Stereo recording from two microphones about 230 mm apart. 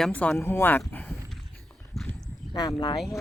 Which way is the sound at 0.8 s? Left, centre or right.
Centre.